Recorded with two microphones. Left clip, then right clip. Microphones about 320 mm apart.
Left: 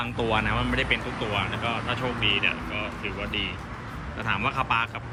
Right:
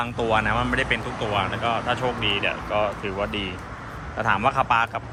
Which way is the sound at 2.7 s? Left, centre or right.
Right.